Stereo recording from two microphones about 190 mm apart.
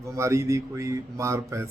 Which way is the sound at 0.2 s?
15° right (ahead or behind).